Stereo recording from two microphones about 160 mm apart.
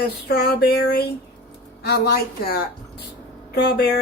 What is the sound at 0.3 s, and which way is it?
Speech, 75° left (ahead or behind).